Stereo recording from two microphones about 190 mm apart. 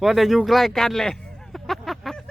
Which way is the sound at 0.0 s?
Centre (ahead or behind).